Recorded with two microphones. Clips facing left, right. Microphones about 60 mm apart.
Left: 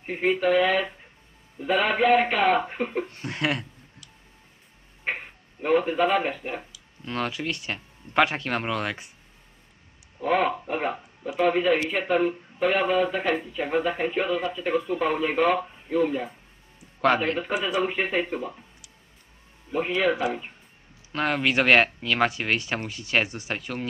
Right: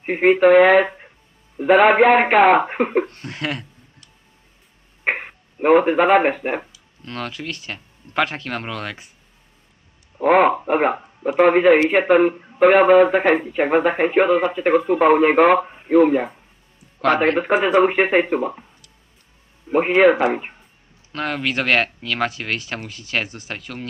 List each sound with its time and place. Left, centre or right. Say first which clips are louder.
0.0 s speech: right 10 dB; right
3.1 s speech: even; centre
5.0 s speech: right 8 dB; right
7.0 s speech: left 1 dB; centre
10.2 s speech: right 9 dB; right
19.7 s speech: right 10 dB; right
21.1 s speech: even; centre